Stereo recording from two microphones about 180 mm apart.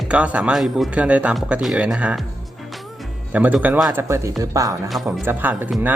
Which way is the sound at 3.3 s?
10° right (ahead or behind).